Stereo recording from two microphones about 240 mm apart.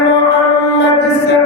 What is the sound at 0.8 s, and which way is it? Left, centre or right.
Music, left.